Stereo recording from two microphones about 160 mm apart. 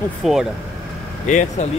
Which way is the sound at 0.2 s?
Centre (ahead or behind).